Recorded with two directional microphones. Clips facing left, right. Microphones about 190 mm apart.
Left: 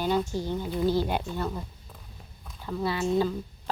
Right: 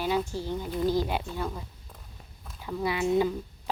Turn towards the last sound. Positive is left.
turn(degrees=-15)  # may be behind; listen again after turning